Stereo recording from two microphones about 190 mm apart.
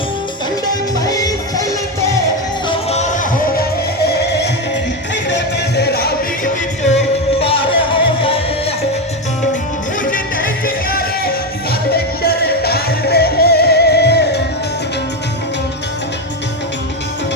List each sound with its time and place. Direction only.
0.9 s music: 20° left (ahead or behind)
2.6 s music: 35° left (ahead or behind)
3.5 s music: 55° left (ahead or behind)
6.8 s music: 35° left (ahead or behind)
10.0 s music: 45° left (ahead or behind)